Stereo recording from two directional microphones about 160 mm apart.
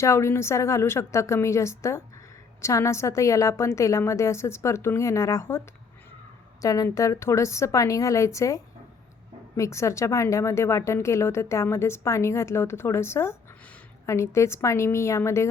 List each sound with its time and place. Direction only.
0.0 s a woman's voice: 15° left (ahead or behind)